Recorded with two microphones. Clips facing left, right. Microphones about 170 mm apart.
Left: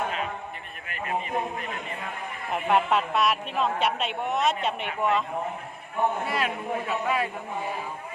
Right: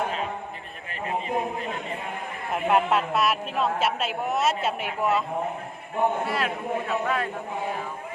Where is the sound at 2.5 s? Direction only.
Centre (ahead or behind).